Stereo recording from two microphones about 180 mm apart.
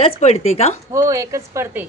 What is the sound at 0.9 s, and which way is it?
Speech, 20° right (ahead or behind).